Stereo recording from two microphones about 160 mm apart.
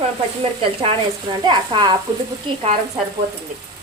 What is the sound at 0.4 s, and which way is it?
Speech, 35° right (ahead or behind).